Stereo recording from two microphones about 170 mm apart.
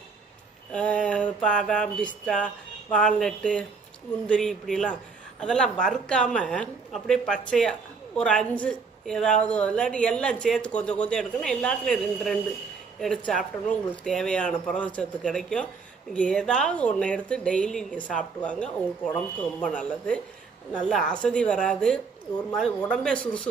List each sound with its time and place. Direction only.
0.7 s a woman's voice: 5° left (ahead or behind)